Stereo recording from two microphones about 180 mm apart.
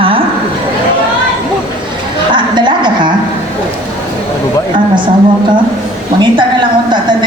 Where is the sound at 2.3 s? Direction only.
25° right (ahead or behind).